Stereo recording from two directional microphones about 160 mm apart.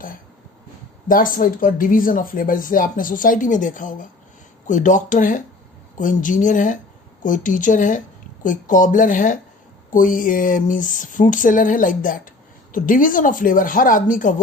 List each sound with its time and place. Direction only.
1.0 s speech: 60° left (ahead or behind)